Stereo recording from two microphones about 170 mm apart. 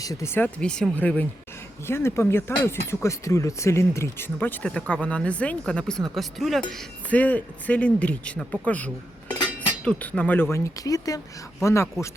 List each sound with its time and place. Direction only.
0.0 s speech: 20° left (ahead or behind)